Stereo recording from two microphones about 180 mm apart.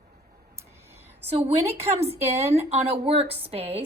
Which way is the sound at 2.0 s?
35° right (ahead or behind).